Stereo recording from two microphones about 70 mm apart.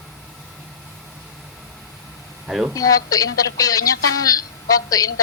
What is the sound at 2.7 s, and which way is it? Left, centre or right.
A woman's voice, left.